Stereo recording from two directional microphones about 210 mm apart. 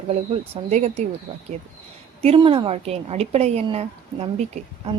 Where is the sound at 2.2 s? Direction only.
25° right (ahead or behind).